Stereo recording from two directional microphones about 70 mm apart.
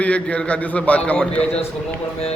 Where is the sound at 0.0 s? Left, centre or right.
Centre.